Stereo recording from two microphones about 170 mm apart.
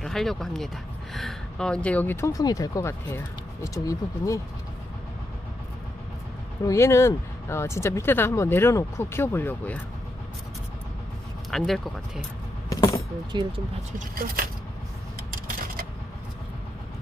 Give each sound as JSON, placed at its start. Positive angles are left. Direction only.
{"t": 0.0, "sound": "speech", "side_deg": 0}
{"t": 6.6, "sound": "speech", "side_deg": 15}
{"t": 11.5, "sound": "speech", "side_deg": 0}
{"t": 12.6, "sound": "keys jangling", "side_deg": 20}
{"t": 13.9, "sound": "speech", "side_deg": -60}
{"t": 15.3, "sound": "a sound", "side_deg": -55}